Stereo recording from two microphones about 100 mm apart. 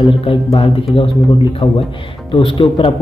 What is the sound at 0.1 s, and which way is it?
Speech, 70° left (ahead or behind).